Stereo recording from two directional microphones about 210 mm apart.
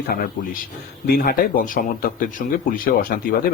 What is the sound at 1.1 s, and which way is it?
Speech, 45° left (ahead or behind).